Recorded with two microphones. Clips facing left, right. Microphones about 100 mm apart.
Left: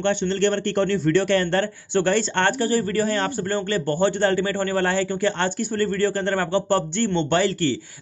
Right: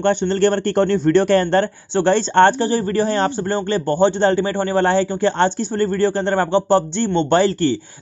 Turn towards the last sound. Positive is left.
turn(degrees=-30)  # may be behind; listen again after turning